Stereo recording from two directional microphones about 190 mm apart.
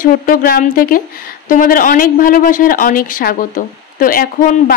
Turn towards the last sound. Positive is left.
turn(degrees=50)  # may be behind; listen again after turning